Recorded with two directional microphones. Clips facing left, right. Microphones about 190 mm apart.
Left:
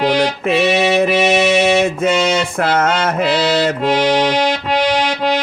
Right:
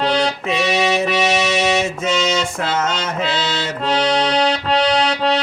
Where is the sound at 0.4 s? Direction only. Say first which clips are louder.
Left 4 dB; 55° left (ahead or behind).